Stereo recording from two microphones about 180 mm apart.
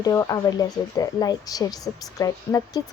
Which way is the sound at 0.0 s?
20° left (ahead or behind).